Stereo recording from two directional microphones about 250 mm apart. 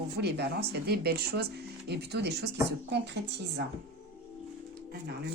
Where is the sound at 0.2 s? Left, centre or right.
Right.